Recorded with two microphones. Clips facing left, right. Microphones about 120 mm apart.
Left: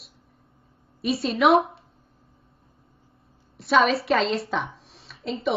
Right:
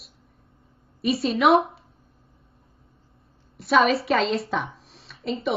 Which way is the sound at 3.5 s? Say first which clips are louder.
Right 1 dB; centre (ahead or behind).